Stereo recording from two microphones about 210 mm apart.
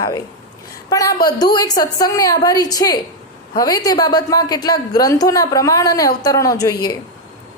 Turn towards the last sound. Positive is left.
turn(degrees=20)  # may be behind; listen again after turning